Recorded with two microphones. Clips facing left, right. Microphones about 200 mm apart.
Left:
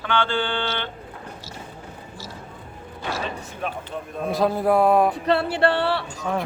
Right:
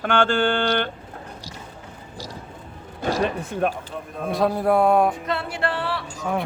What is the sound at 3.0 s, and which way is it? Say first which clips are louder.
Music: right 6 dB; 45° right (ahead or behind).